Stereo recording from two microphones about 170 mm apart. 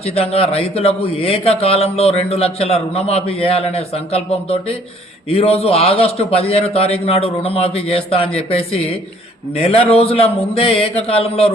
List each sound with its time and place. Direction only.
0.0 s a man's voice: 35° left (ahead or behind)